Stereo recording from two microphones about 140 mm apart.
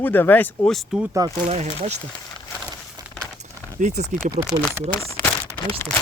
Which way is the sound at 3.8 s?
55° right (ahead or behind).